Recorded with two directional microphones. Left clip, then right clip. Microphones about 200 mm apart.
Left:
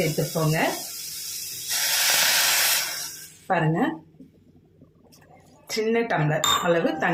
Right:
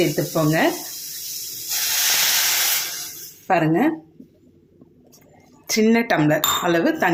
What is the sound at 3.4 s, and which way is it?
Speech, 35° right (ahead or behind).